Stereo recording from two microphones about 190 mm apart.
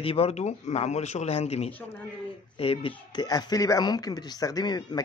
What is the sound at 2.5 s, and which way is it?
Speech, 30° left (ahead or behind).